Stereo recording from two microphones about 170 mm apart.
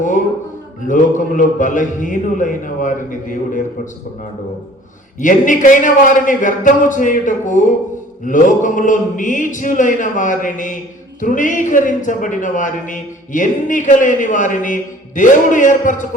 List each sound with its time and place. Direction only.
0.9 s a man's voice: 50° left (ahead or behind)
5.2 s a man's voice: 50° left (ahead or behind)